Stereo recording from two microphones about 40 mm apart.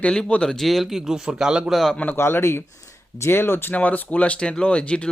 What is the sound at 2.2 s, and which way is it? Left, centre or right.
A man's voice, left.